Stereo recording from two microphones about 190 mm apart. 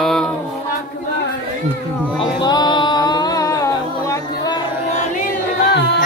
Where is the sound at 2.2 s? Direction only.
20° left (ahead or behind).